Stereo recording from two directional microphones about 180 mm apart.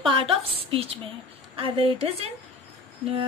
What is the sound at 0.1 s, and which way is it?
A woman's voice, 30° right (ahead or behind).